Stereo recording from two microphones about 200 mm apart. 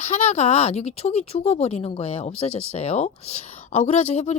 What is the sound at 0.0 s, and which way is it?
Speech, 35° left (ahead or behind).